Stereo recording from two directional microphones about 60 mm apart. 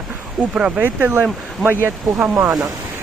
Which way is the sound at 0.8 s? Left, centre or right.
Right.